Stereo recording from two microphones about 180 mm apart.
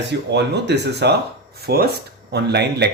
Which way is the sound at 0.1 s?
70° right (ahead or behind).